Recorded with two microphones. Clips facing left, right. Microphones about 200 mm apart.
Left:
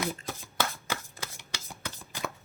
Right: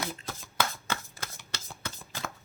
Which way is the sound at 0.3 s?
15° left (ahead or behind).